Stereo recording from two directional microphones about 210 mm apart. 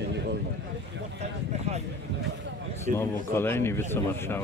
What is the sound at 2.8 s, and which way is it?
Speech, 10° left (ahead or behind).